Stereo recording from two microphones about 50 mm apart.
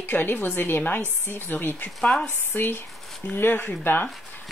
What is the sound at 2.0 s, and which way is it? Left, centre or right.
Speech, centre.